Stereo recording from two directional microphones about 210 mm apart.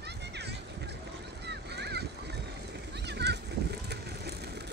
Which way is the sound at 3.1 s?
55° right (ahead or behind).